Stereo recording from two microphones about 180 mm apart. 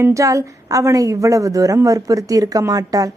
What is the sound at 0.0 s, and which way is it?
A woman's voice, 15° right (ahead or behind).